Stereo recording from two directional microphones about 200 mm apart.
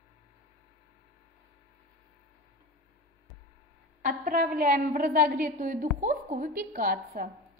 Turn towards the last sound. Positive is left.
turn(degrees=-45)  # may be behind; listen again after turning